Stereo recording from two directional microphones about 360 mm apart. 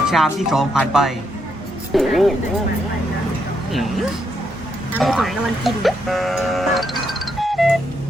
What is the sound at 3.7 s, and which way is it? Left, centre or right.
Speech, centre.